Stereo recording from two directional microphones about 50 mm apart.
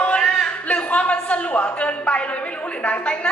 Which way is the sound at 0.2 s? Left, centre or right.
Centre.